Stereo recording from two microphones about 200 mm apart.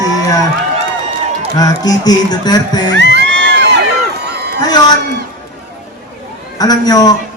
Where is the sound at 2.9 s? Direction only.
60° right (ahead or behind).